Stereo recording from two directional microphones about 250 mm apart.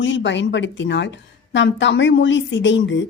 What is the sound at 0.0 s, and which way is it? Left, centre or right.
A woman's voice, left.